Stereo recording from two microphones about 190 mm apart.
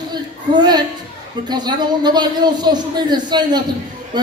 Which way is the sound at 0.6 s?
20° right (ahead or behind).